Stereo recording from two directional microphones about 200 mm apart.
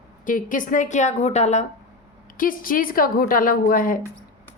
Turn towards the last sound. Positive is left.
turn(degrees=45)  # may be behind; listen again after turning